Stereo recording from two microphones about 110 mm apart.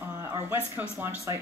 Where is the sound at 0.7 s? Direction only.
20° right (ahead or behind).